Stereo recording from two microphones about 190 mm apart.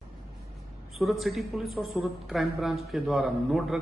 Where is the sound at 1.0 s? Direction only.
Centre (ahead or behind).